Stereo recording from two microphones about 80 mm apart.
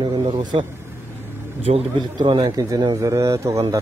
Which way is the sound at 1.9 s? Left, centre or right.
Right.